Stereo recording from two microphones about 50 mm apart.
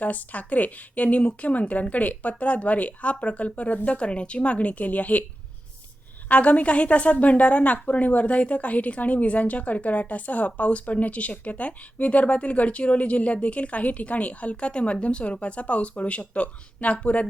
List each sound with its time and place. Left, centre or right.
0.0 s a woman's voice: left
6.2 s a woman's voice: left